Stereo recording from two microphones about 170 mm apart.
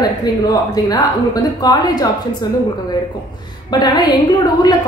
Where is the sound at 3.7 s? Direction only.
25° left (ahead or behind).